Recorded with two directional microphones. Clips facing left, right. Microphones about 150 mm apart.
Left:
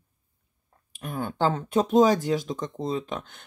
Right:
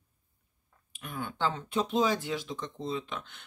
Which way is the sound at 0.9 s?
40° left (ahead or behind).